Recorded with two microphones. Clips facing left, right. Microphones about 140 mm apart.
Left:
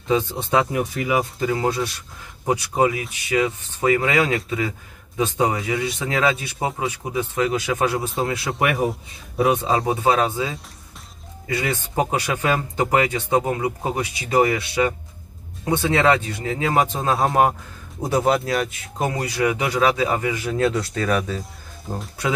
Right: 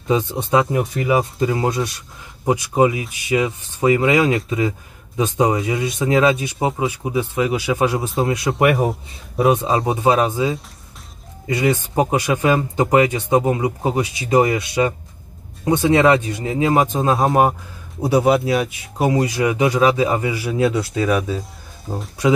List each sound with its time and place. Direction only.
0.1 s speech: 20° right (ahead or behind)
9.4 s speech: 25° right (ahead or behind)
16.8 s speech: 15° right (ahead or behind)